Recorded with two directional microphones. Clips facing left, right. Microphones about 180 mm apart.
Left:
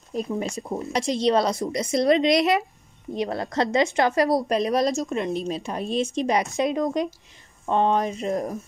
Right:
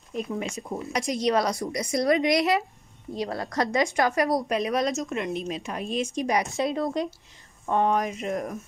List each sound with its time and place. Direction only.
0.1 s a woman's voice: 35° left (ahead or behind)